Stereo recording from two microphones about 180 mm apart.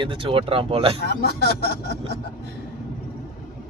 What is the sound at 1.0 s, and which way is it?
Speech, 60° left (ahead or behind).